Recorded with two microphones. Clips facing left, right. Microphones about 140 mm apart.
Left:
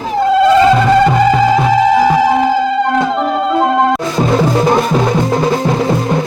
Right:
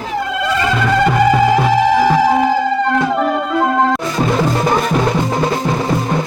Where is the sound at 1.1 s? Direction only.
20° left (ahead or behind).